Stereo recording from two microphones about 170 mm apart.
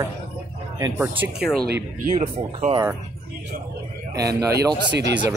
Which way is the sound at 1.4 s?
Centre (ahead or behind).